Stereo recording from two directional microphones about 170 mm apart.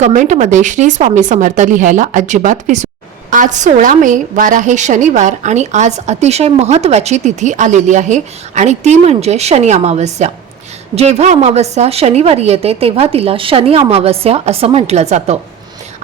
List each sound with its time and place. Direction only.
0.0 s a woman's voice: 45° right (ahead or behind)